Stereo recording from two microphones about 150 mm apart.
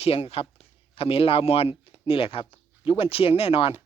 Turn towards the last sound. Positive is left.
turn(degrees=40)  # may be behind; listen again after turning